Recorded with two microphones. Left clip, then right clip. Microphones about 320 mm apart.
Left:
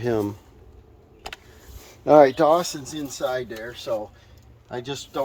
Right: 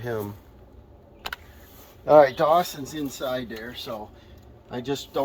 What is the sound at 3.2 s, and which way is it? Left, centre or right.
Speech, centre.